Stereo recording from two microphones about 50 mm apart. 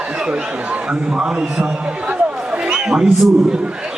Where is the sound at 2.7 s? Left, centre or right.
Centre.